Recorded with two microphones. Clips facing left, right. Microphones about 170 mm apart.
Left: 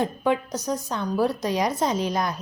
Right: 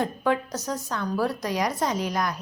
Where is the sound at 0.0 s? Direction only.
20° left (ahead or behind).